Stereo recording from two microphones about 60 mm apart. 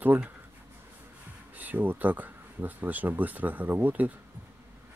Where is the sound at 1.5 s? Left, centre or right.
Right.